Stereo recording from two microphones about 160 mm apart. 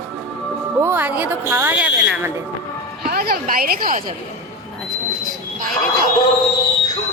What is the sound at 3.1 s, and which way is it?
Speech, 70° right (ahead or behind).